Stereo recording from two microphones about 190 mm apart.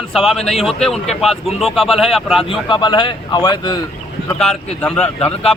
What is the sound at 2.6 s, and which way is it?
Speech, 25° left (ahead or behind).